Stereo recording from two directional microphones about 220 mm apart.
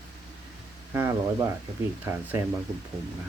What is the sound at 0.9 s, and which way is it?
Speech, 15° right (ahead or behind).